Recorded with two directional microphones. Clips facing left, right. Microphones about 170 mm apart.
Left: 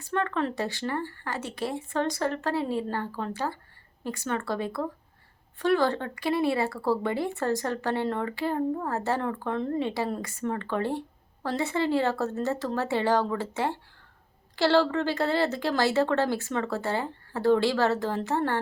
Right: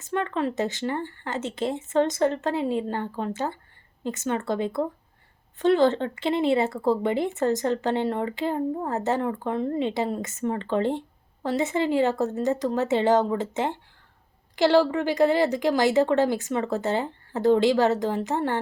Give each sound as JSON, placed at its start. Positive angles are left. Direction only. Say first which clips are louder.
{"t": 0.0, "sound": "a woman's voice", "louder": "right 2 dB", "side_deg": -20}